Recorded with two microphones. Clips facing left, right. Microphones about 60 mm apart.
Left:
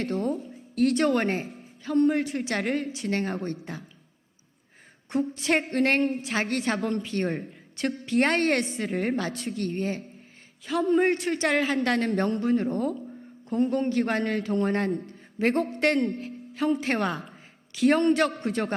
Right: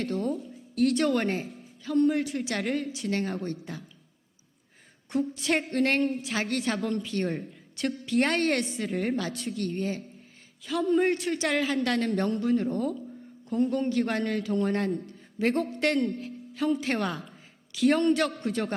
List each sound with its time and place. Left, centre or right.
0.0 s a woman's voice: left
5.0 s a sound: left
5.3 s a woman's voice: left
6.1 s a woman's voice: left
10.6 s a man's voice: left